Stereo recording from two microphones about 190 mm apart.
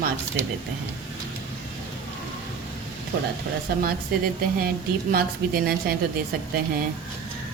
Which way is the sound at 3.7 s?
55° right (ahead or behind).